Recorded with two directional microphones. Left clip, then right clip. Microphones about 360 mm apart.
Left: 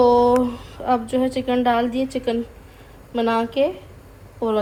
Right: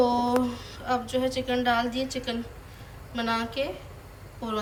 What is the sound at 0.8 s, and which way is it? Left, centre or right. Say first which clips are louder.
A woman's voice: left 7 dB; centre.